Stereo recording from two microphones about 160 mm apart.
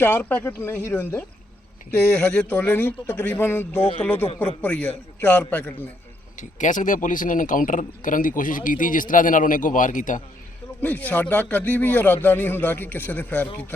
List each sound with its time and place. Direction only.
0.0 s a man's voice: 10° left (ahead or behind)
2.3 s a man's voice: 5° left (ahead or behind)
6.4 s a man's voice: 50° left (ahead or behind)
10.8 s a man's voice: 10° left (ahead or behind)